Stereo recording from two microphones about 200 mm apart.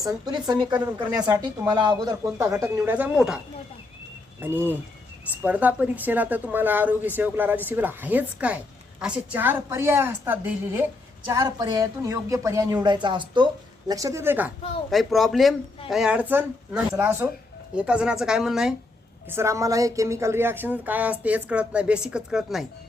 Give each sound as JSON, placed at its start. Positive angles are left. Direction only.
{"t": 0.0, "sound": "a woman's voice", "side_deg": -20}
{"t": 19.3, "sound": "a woman's voice", "side_deg": -15}